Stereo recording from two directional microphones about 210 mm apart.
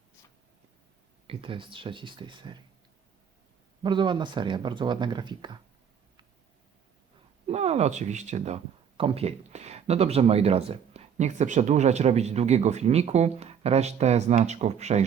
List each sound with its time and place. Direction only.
1.3 s speech: 25° right (ahead or behind)
3.8 s speech: 20° right (ahead or behind)
7.4 s speech: 30° right (ahead or behind)